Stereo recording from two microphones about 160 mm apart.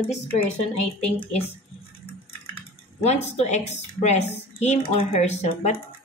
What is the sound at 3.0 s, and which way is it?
A woman's voice, 45° left (ahead or behind).